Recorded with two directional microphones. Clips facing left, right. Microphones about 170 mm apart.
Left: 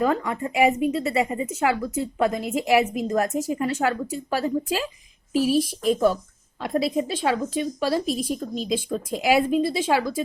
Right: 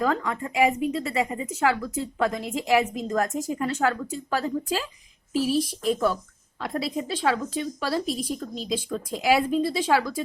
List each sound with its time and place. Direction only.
0.0 s a woman's voice: 20° left (ahead or behind)